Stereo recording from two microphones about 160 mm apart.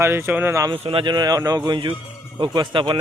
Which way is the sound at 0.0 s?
15° right (ahead or behind).